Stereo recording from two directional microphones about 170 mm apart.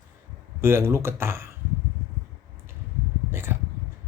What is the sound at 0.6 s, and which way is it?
Speech, 15° right (ahead or behind).